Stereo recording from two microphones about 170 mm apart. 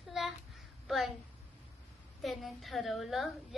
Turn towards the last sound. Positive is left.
turn(degrees=0)  # may be behind; listen again after turning